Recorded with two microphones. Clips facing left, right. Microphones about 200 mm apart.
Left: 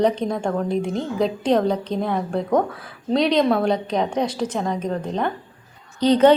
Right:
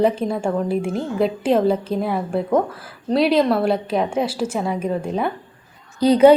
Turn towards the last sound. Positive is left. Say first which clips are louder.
# right 3 dB
turn(degrees=-10)  # may be behind; listen again after turning